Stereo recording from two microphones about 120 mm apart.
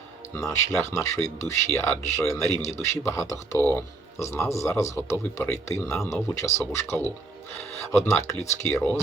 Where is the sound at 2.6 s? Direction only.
70° left (ahead or behind).